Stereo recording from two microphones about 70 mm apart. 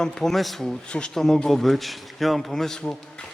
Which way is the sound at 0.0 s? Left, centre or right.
Centre.